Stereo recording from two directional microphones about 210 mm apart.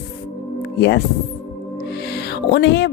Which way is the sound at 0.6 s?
50° left (ahead or behind).